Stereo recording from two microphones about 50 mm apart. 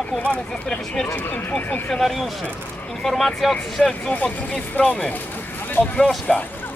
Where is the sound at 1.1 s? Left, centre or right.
Left.